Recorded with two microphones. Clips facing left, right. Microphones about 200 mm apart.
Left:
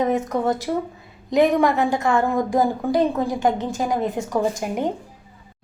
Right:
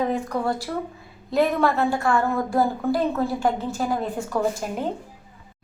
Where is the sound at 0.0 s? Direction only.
20° left (ahead or behind).